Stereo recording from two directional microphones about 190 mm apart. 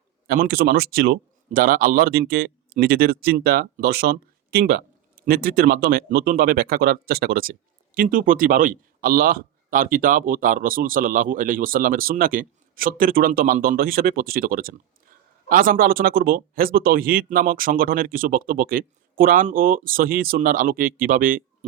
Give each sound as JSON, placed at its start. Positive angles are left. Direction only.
{"t": 0.3, "sound": "speech", "side_deg": -55}